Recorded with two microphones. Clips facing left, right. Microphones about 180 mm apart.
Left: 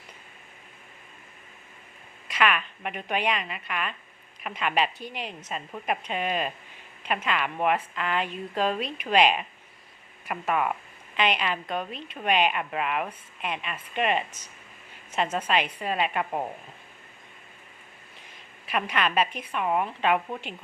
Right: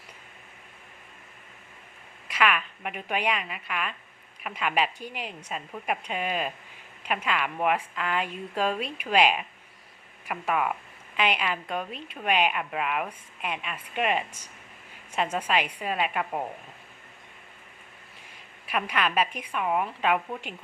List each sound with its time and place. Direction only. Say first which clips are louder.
2.2 s a woman's voice: even; 5° right (ahead or behind)
18.7 s a woman's voice: left 1 dB; 5° right (ahead or behind)